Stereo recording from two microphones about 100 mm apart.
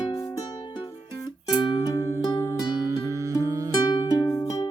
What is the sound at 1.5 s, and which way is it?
Music, 50° left (ahead or behind).